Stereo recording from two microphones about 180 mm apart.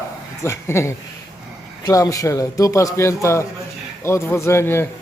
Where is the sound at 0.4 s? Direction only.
15° left (ahead or behind).